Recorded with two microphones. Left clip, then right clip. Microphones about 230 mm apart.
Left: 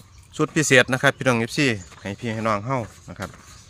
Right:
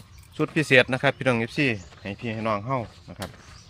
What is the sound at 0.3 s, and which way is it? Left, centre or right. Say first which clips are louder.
Speech: left 2 dB; left.